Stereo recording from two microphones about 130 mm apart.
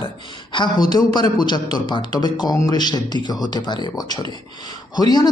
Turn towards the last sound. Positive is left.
turn(degrees=30)  # may be behind; listen again after turning